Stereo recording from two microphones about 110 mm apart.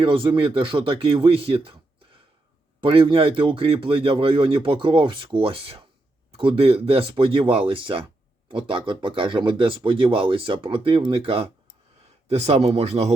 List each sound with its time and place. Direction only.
0.0 s speech: 55° right (ahead or behind)
2.8 s speech: 55° right (ahead or behind)
12.3 s speech: 70° right (ahead or behind)